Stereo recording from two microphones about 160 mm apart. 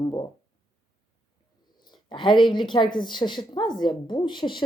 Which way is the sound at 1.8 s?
30° left (ahead or behind).